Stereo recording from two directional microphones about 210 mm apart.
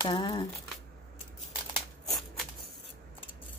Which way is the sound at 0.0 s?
20° left (ahead or behind).